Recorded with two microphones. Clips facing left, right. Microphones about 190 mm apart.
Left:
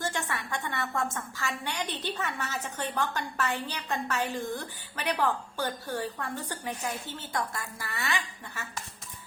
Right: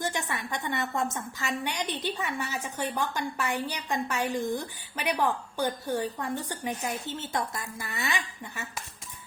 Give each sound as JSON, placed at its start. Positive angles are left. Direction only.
{"t": 0.0, "sound": "a woman's voice", "side_deg": -15}